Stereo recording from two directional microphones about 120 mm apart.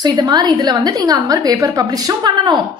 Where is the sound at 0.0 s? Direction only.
35° right (ahead or behind).